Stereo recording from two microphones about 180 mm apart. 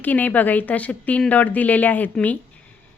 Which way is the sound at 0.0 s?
10° left (ahead or behind).